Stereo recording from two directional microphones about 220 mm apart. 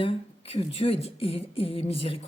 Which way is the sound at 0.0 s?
25° left (ahead or behind).